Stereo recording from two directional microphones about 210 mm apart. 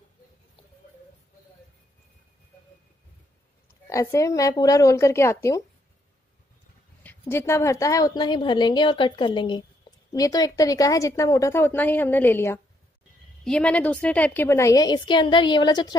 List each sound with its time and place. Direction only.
3.8 s a woman's voice: 15° left (ahead or behind)
7.0 s a woman's voice: 10° left (ahead or behind)